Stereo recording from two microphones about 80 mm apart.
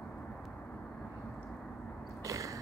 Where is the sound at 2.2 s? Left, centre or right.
Right.